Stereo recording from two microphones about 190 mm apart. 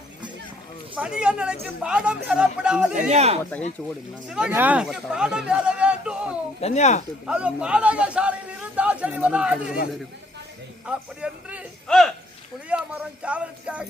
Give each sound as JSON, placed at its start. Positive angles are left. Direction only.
{"t": 0.9, "sound": "speech", "side_deg": -5}
{"t": 2.9, "sound": "speech", "side_deg": -40}
{"t": 3.8, "sound": "a man's voice", "side_deg": 5}
{"t": 6.6, "sound": "speech", "side_deg": 35}
{"t": 7.3, "sound": "a man's voice", "side_deg": -5}
{"t": 10.8, "sound": "speech", "side_deg": -5}